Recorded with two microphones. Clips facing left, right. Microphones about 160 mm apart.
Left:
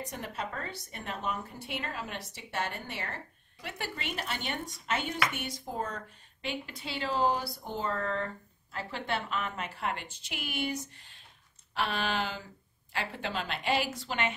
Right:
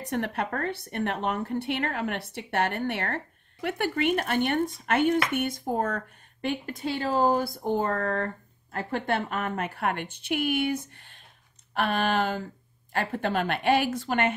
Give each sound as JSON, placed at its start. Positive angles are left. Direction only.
{"t": 0.0, "sound": "speech", "side_deg": -65}
{"t": 11.0, "sound": "a sound", "side_deg": -55}
{"t": 11.7, "sound": "speech", "side_deg": -50}